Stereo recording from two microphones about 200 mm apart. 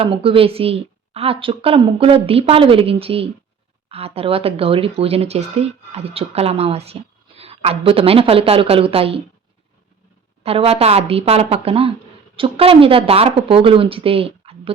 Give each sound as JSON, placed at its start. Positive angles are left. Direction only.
{"t": 0.0, "sound": "speech", "side_deg": -25}
{"t": 10.4, "sound": "speech", "side_deg": -30}